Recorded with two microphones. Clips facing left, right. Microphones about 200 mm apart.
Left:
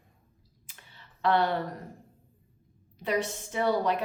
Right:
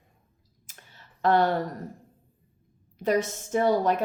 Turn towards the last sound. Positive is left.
turn(degrees=-45)  # may be behind; listen again after turning